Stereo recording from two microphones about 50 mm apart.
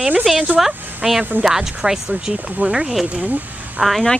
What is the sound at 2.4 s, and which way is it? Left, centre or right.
Speech, right.